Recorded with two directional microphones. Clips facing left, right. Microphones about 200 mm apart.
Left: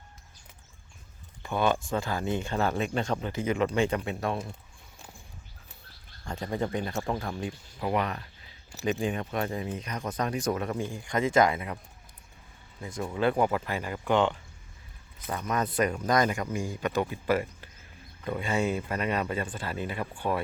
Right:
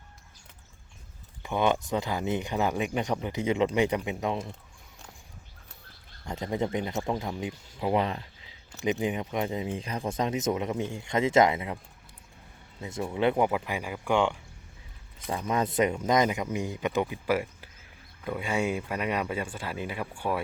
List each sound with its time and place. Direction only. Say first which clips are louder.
1.4 s speech: right 1 dB; 15° right (ahead or behind)
6.2 s speech: right 1 dB; 20° right (ahead or behind)
12.8 s speech: right 1 dB; 20° right (ahead or behind)
15.3 s speech: right 2 dB; 25° right (ahead or behind); by 20.4 s 10° right (ahead or behind)